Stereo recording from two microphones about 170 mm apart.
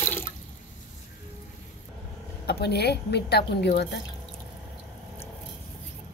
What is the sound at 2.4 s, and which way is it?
Speech, 75° left (ahead or behind).